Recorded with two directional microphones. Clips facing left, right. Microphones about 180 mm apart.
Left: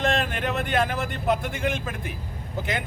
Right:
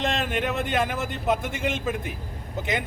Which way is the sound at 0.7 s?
20° right (ahead or behind).